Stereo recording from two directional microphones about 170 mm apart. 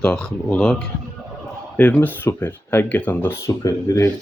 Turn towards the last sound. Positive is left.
turn(degrees=20)  # may be behind; listen again after turning